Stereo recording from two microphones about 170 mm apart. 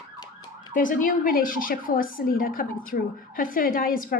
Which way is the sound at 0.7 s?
50° left (ahead or behind).